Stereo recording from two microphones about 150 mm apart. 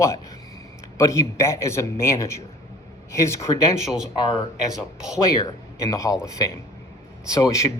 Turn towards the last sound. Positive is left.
turn(degrees=20)  # may be behind; listen again after turning